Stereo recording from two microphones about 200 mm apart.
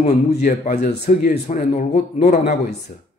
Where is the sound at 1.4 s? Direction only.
35° left (ahead or behind).